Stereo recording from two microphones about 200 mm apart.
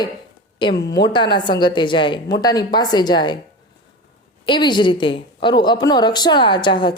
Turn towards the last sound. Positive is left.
turn(degrees=25)  # may be behind; listen again after turning